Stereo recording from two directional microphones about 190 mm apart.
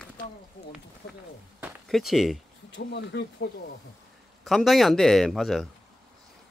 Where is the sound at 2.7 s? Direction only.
65° left (ahead or behind).